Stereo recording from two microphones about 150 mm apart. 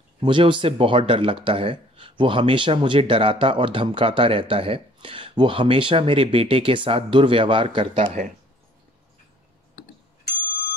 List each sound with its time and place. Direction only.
0.2 s speech: 35° right (ahead or behind)